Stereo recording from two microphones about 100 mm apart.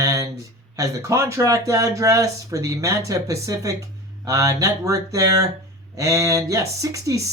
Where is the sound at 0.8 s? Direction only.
30° right (ahead or behind).